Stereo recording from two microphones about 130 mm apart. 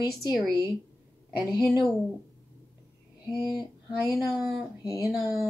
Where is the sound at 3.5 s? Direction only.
30° left (ahead or behind).